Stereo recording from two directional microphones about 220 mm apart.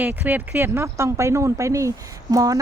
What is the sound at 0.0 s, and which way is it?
Speech, 10° right (ahead or behind).